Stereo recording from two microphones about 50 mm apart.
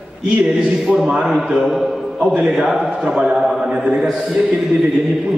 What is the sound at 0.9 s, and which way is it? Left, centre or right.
Speech, centre.